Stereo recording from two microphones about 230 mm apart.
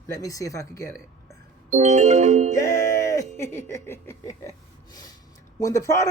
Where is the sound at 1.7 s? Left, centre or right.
Right.